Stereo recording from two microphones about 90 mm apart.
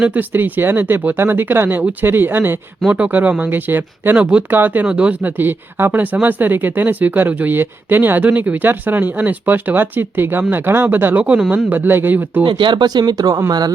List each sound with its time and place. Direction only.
0.0 s speech: 20° right (ahead or behind)
11.7 s speech: 20° right (ahead or behind)
12.5 s speech: 60° right (ahead or behind); by 13.4 s 45° right (ahead or behind)